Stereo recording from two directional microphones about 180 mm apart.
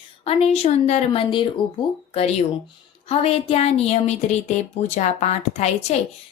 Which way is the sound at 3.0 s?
35° left (ahead or behind).